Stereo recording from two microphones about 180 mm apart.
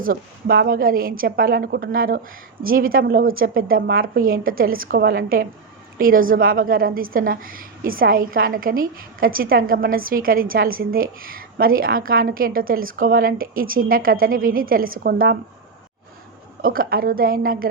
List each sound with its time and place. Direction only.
0.0 s a woman's voice: 55° right (ahead or behind)
16.6 s a woman's voice: 55° right (ahead or behind)